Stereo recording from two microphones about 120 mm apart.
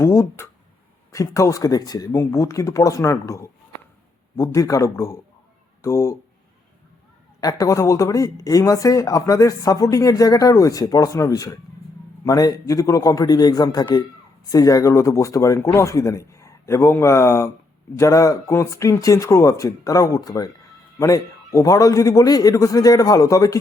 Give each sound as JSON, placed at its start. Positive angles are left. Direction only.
{"t": 0.0, "sound": "speech", "side_deg": 20}
{"t": 7.4, "sound": "a man's voice", "side_deg": 30}